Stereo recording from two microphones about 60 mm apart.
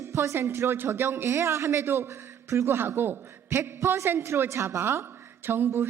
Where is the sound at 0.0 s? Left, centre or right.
Right.